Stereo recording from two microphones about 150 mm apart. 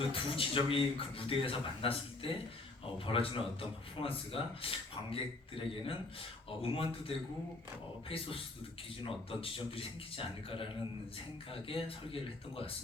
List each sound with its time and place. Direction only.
0.1 s a man's voice: 35° left (ahead or behind)